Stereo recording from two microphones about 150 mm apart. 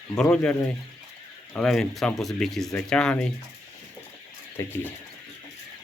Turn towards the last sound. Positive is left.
turn(degrees=15)  # may be behind; listen again after turning